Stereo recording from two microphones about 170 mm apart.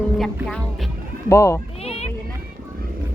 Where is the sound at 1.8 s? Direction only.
35° left (ahead or behind).